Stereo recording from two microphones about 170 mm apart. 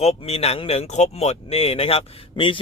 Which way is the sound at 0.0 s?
35° left (ahead or behind).